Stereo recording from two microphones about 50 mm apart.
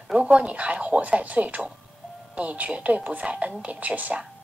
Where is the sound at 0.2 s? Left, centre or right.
Right.